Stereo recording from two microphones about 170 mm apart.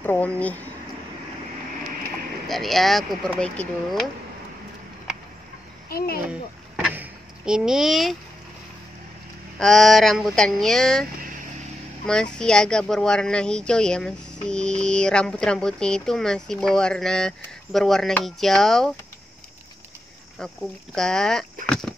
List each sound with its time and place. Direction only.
0.0 s speech: 10° left (ahead or behind)
2.4 s speech: centre (ahead or behind)
5.9 s a child's voice: 60° left (ahead or behind)
6.9 s vehicle: 5° right (ahead or behind)
9.6 s speech: centre (ahead or behind)
12.1 s speech: 5° left (ahead or behind)
20.3 s speech: 5° left (ahead or behind)